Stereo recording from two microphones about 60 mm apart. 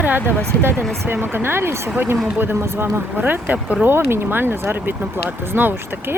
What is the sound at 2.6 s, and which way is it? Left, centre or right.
Speech, right.